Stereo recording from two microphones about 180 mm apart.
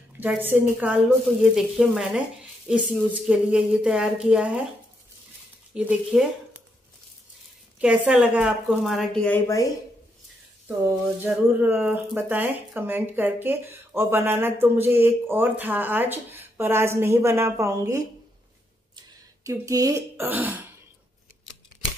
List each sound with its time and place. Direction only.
0.2 s speech: 10° right (ahead or behind)
5.8 s speech: 5° right (ahead or behind)
7.8 s speech: 5° right (ahead or behind); by 9.7 s 15° left (ahead or behind)
11.2 s speech: 10° right (ahead or behind)
19.5 s speech: 20° right (ahead or behind)